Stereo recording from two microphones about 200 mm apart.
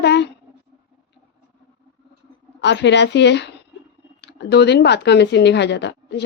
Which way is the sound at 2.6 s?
60° left (ahead or behind).